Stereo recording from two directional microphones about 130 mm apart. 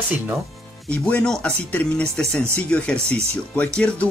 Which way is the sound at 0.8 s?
10° left (ahead or behind).